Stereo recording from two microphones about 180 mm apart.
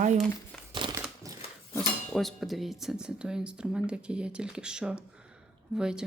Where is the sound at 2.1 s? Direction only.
Centre (ahead or behind).